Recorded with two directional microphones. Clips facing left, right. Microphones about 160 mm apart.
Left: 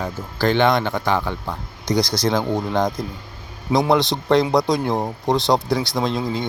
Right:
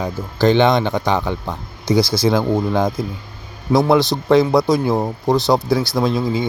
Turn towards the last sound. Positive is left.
turn(degrees=-5)  # may be behind; listen again after turning